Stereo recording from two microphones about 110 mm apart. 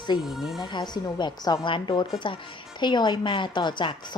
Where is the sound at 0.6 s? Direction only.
45° left (ahead or behind).